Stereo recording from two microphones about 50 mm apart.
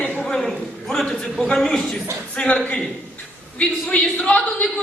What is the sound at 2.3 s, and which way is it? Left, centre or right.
A woman's voice, left.